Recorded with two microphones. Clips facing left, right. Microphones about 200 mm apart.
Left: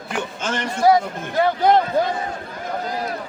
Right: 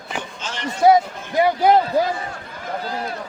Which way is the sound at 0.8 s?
20° right (ahead or behind).